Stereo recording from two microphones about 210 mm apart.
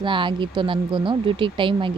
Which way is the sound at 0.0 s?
25° right (ahead or behind).